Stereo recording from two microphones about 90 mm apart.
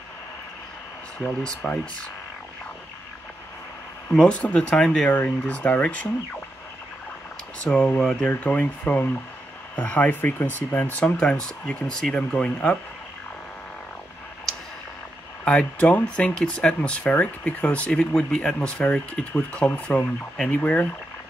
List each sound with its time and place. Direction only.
1.4 s speech: 10° left (ahead or behind)
4.1 s speech: 10° left (ahead or behind)
7.7 s speech: 20° left (ahead or behind)
15.4 s speech: 15° left (ahead or behind)